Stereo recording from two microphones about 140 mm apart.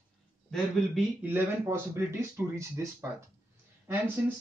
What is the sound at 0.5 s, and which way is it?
Speech, centre (ahead or behind).